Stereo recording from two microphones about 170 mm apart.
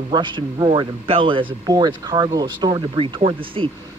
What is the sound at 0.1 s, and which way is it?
Speech, 25° right (ahead or behind).